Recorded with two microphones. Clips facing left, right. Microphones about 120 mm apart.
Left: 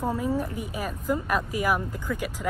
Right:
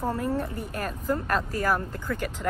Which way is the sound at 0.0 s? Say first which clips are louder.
Left 1 dB; 10° left (ahead or behind).